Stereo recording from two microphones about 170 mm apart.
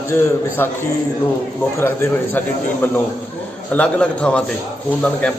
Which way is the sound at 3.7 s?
5° left (ahead or behind).